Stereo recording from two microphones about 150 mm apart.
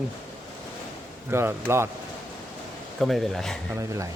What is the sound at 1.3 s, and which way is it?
Speech, 15° right (ahead or behind).